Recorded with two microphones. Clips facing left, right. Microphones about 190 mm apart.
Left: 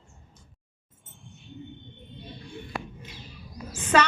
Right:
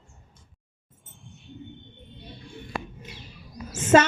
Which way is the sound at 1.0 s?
Centre (ahead or behind).